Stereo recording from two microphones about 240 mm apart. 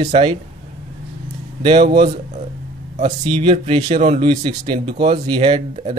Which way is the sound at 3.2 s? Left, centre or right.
Centre.